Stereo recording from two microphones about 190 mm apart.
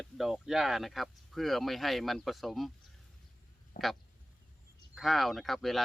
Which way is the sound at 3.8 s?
45° left (ahead or behind).